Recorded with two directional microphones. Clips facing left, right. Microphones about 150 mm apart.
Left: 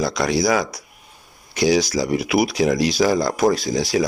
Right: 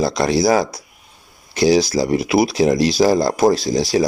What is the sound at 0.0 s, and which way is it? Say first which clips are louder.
Speech: right 3 dB; 30° right (ahead or behind).